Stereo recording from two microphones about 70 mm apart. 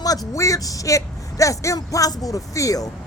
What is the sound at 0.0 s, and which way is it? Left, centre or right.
Speech, left.